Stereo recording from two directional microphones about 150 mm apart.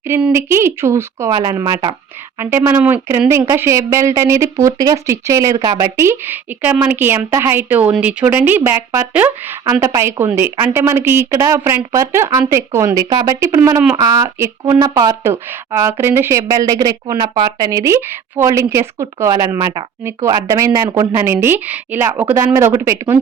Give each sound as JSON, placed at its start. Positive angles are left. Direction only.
{"t": 0.1, "sound": "speech", "side_deg": -15}
{"t": 2.4, "sound": "speech", "side_deg": -15}